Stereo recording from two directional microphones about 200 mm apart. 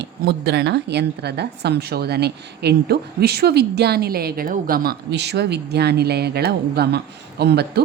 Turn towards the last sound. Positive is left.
turn(degrees=-55)  # may be behind; listen again after turning